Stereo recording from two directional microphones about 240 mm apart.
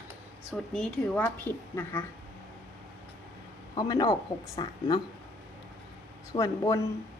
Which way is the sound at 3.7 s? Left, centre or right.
Centre.